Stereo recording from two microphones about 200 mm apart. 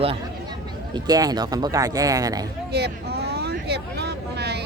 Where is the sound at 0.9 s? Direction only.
20° right (ahead or behind).